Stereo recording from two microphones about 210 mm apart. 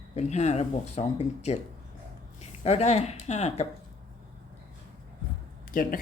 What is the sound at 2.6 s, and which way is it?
Speech, 30° left (ahead or behind).